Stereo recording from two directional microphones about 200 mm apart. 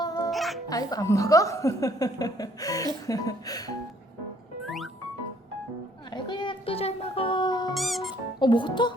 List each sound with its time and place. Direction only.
0.0 s music: 20° left (ahead or behind)
0.3 s music: centre (ahead or behind)
0.7 s a woman's voice: 20° left (ahead or behind)
4.6 s music: centre (ahead or behind)
6.1 s music: 25° left (ahead or behind)
7.7 s music: centre (ahead or behind)
8.4 s speech: 25° left (ahead or behind)